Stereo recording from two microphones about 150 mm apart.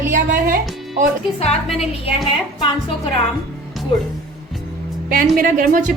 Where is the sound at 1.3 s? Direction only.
45° left (ahead or behind).